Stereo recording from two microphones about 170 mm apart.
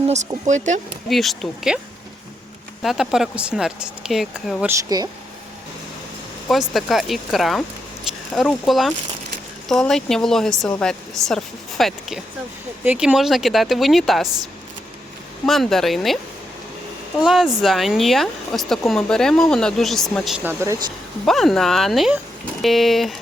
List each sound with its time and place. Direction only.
0.1 s speech: 45° right (ahead or behind)
1.1 s speech: centre (ahead or behind)
2.8 s speech: centre (ahead or behind)
4.8 s speech: 20° right (ahead or behind)
6.5 s speech: centre (ahead or behind)
15.4 s speech: centre (ahead or behind)
17.2 s speech: 5° right (ahead or behind)
20.4 s speech: 15° right (ahead or behind)
21.2 s speech: centre (ahead or behind)